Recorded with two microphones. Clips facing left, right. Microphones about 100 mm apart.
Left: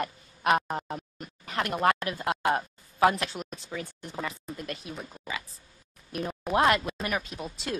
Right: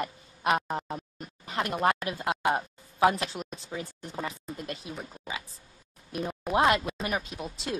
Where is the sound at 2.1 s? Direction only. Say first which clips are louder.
Left 1 dB; 20° right (ahead or behind).